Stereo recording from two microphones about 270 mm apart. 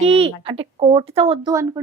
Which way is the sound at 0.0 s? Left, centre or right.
Right.